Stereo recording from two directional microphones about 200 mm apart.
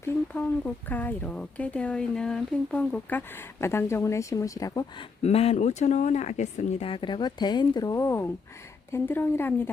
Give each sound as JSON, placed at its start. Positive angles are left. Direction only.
{"t": 0.0, "sound": "speech", "side_deg": 10}
{"t": 5.2, "sound": "speech", "side_deg": 30}